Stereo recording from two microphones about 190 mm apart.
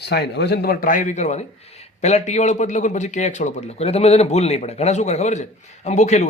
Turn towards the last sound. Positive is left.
turn(degrees=35)  # may be behind; listen again after turning